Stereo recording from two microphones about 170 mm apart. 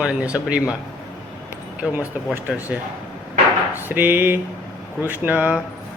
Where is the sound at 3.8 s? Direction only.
10° right (ahead or behind).